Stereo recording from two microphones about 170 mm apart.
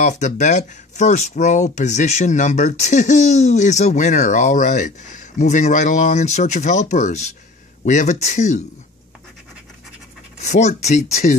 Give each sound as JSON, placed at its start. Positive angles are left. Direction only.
{"t": 0.0, "sound": "speech", "side_deg": 45}
{"t": 10.4, "sound": "speech", "side_deg": 40}